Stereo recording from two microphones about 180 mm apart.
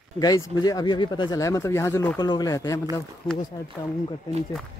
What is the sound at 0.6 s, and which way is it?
Speech, 20° left (ahead or behind).